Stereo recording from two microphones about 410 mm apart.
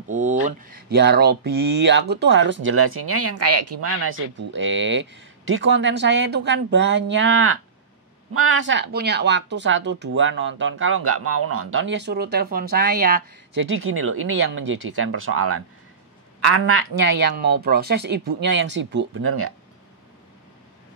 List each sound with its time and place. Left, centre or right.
0.1 s speech: centre